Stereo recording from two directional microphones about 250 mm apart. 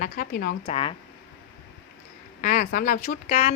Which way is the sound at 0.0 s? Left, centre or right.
Left.